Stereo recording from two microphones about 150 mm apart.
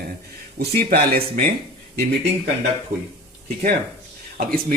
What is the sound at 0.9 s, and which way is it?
Speech, 90° right.